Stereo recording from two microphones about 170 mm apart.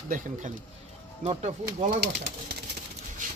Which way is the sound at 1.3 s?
40° right (ahead or behind).